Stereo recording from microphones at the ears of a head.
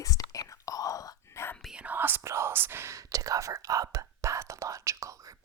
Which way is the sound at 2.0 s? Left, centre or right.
Right.